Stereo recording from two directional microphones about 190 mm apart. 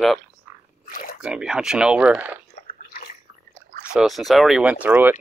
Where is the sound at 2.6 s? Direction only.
50° left (ahead or behind).